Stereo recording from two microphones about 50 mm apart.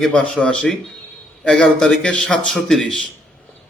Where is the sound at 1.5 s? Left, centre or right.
Centre.